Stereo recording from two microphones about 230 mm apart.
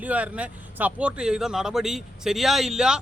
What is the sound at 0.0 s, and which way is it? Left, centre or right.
Speech, centre.